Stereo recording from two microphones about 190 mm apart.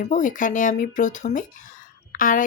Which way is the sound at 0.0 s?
40° left (ahead or behind).